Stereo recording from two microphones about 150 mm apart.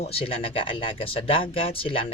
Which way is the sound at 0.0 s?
40° left (ahead or behind).